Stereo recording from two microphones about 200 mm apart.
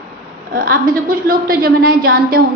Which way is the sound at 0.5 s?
45° right (ahead or behind).